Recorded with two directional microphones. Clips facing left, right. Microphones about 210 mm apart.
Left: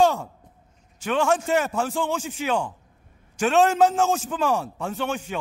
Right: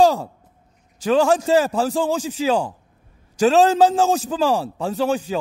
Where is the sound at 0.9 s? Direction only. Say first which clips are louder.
Right 6 dB; 35° right (ahead or behind).